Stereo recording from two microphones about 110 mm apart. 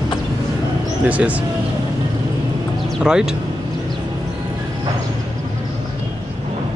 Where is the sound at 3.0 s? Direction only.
5° right (ahead or behind).